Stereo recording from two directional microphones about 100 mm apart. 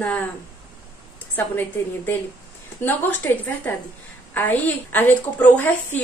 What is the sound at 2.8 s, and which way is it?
Speech, 20° left (ahead or behind).